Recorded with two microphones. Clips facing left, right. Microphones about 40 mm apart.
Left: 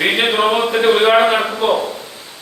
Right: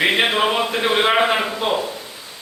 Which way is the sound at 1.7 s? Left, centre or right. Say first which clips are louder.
Left 4 dB; left.